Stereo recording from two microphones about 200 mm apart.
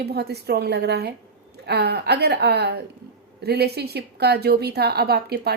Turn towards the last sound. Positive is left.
turn(degrees=-50)  # may be behind; listen again after turning